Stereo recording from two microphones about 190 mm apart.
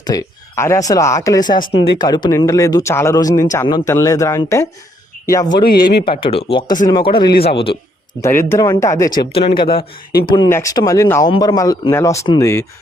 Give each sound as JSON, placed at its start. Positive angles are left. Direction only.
{"t": 0.0, "sound": "speech", "side_deg": 20}
{"t": 5.5, "sound": "speech", "side_deg": 55}
{"t": 6.1, "sound": "speech", "side_deg": 25}
{"t": 8.2, "sound": "speech", "side_deg": 15}
{"t": 9.1, "sound": "speech", "side_deg": 30}